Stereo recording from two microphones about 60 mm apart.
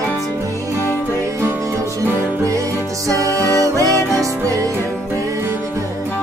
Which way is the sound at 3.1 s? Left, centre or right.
Right.